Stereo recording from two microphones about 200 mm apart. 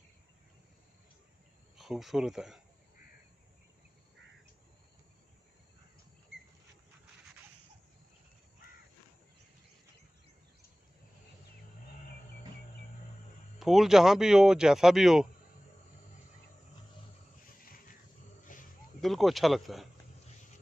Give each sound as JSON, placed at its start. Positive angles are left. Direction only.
{"t": 1.8, "sound": "speech", "side_deg": 0}
{"t": 13.6, "sound": "speech", "side_deg": 0}
{"t": 18.5, "sound": "a sound", "side_deg": 40}
{"t": 18.9, "sound": "speech", "side_deg": 0}